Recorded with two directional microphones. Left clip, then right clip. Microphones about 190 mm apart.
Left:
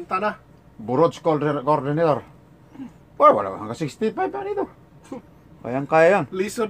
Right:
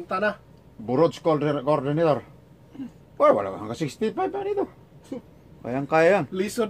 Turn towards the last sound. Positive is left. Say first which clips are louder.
# left 1 dB
turn(degrees=-15)  # may be behind; listen again after turning